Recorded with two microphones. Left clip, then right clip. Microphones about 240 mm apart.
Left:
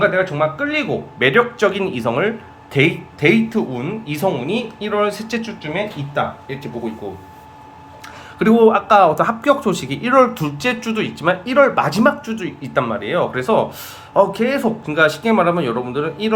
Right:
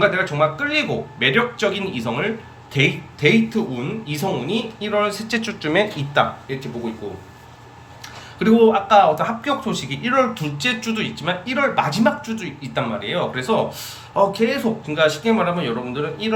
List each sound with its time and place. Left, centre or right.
0.0 s speech: centre
5.4 s speech: centre
6.1 s speech: centre
8.4 s speech: centre